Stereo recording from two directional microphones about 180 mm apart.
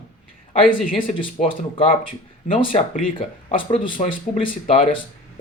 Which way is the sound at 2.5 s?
30° left (ahead or behind).